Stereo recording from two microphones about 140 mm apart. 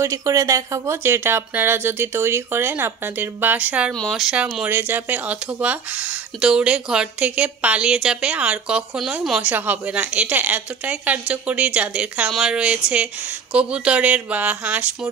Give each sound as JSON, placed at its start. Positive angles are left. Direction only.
{"t": 0.0, "sound": "speech", "side_deg": -20}
{"t": 3.9, "sound": "speech", "side_deg": 5}